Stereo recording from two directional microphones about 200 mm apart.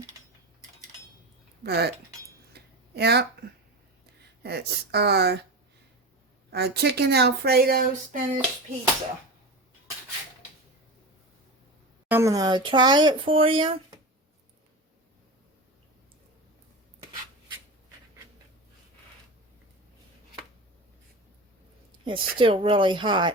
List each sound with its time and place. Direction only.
1.6 s speech: 55° right (ahead or behind)
2.5 s a sound: 55° right (ahead or behind)
4.4 s speech: 55° right (ahead or behind)
6.5 s speech: 55° right (ahead or behind)
12.0 s speech: 10° right (ahead or behind)
22.0 s speech: 25° right (ahead or behind)